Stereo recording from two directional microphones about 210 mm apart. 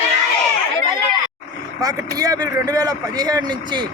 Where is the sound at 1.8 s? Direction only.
15° right (ahead or behind).